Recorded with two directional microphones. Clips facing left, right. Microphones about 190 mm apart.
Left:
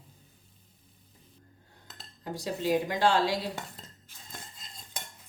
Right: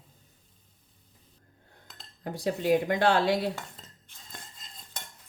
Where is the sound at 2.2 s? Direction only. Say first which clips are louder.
Right 4 dB; 55° right (ahead or behind).